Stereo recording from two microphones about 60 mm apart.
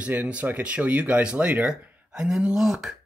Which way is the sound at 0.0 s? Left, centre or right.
Right.